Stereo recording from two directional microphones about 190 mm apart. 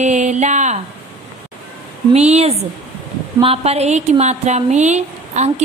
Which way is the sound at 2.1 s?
35° right (ahead or behind).